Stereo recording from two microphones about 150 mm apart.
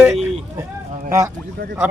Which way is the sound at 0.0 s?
5° right (ahead or behind).